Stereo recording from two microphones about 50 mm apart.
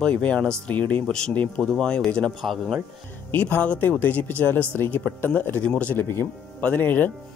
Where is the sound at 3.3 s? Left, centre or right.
Left.